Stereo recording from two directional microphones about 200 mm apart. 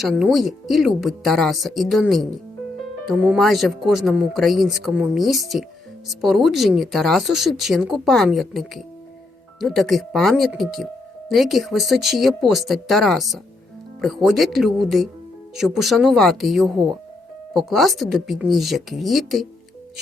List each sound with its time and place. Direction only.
0.0 s speech: centre (ahead or behind)